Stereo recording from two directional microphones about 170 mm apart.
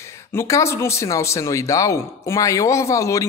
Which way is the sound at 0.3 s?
15° left (ahead or behind).